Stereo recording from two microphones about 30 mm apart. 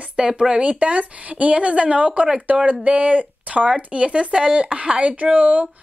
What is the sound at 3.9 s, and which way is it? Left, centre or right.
A woman's voice, right.